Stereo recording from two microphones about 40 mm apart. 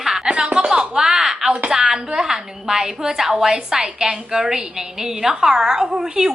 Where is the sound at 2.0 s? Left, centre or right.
Centre.